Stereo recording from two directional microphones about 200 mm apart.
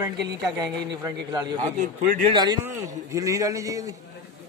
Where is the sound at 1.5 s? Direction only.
40° right (ahead or behind).